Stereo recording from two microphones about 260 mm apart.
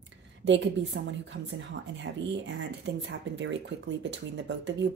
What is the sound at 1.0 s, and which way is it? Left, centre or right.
Speech, right.